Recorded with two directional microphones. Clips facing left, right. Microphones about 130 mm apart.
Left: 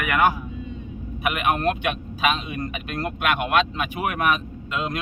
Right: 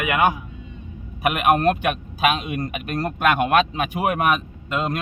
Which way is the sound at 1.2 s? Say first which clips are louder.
Right 5 dB; 40° right (ahead or behind).